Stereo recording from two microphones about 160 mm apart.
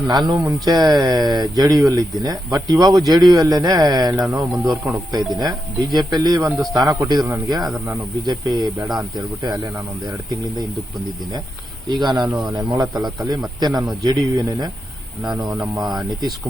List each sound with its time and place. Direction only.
0.1 s speech: 25° right (ahead or behind)
11.9 s speech: 30° right (ahead or behind)
13.0 s speech: centre (ahead or behind)
13.6 s speech: 25° right (ahead or behind)